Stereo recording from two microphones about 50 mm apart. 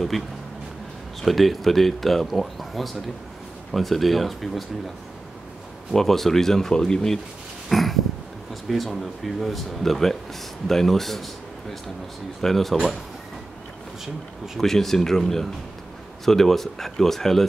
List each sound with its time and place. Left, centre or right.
1.2 s speech: centre
5.9 s speech: centre
7.7 s a sound: centre
8.6 s speech: centre
12.4 s speech: centre
14.0 s speech: centre
14.6 s speech: centre